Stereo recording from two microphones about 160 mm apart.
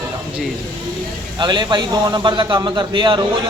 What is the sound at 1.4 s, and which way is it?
Speech, 30° right (ahead or behind).